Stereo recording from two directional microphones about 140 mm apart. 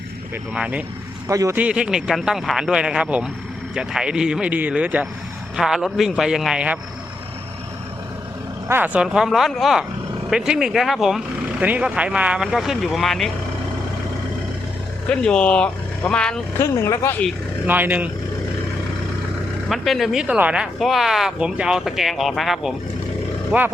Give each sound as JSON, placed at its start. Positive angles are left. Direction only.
{"t": 0.5, "sound": "speech", "side_deg": -10}
{"t": 1.3, "sound": "a man's voice", "side_deg": -20}
{"t": 1.5, "sound": "speech", "side_deg": -10}
{"t": 8.6, "sound": "speech", "side_deg": -15}
{"t": 15.1, "sound": "speech", "side_deg": 5}
{"t": 16.6, "sound": "speech", "side_deg": 20}
{"t": 17.7, "sound": "speech", "side_deg": -15}
{"t": 19.6, "sound": "speech", "side_deg": 0}
{"t": 23.5, "sound": "speech", "side_deg": -10}